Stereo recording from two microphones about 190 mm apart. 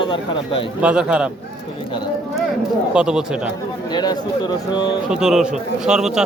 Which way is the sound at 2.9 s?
5° right (ahead or behind).